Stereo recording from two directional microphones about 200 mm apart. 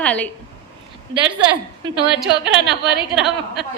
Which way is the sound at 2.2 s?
60° right (ahead or behind).